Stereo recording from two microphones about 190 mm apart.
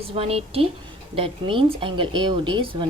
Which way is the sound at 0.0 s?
30° right (ahead or behind).